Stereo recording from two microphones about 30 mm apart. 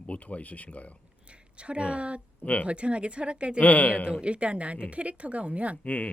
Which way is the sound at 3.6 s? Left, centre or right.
Left.